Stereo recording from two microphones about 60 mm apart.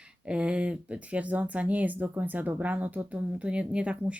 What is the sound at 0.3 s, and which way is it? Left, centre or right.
Speech, centre.